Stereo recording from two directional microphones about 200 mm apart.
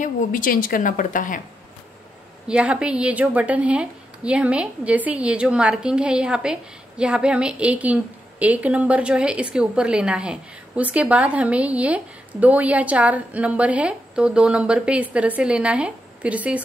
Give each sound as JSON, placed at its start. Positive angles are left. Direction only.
{"t": 0.0, "sound": "speech", "side_deg": 40}
{"t": 2.4, "sound": "a woman's voice", "side_deg": -5}